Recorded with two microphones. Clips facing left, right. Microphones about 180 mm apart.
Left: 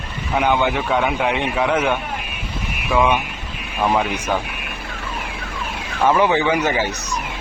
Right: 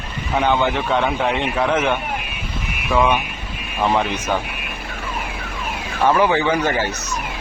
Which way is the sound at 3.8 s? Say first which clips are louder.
Even; 10° left (ahead or behind).